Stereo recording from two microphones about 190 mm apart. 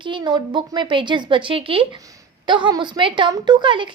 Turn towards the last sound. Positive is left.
turn(degrees=-25)  # may be behind; listen again after turning